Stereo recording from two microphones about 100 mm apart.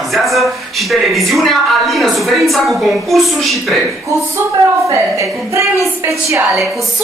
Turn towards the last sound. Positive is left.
turn(degrees=-30)  # may be behind; listen again after turning